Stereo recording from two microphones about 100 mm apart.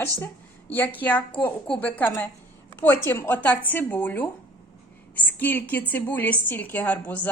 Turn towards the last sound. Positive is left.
turn(degrees=15)  # may be behind; listen again after turning